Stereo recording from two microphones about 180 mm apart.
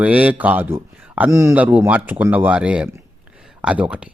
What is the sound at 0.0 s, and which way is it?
A man's voice, 5° right (ahead or behind).